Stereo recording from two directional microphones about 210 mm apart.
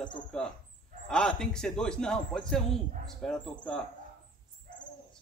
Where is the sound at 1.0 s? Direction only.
5° left (ahead or behind).